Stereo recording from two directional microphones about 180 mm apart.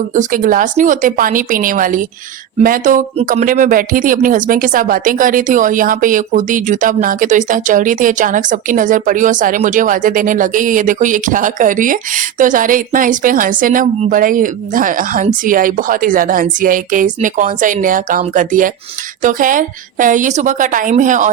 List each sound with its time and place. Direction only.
0.1 s speech: 45° right (ahead or behind)